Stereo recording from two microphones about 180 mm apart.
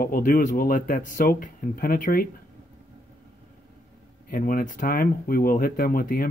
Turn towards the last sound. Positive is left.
turn(degrees=50)  # may be behind; listen again after turning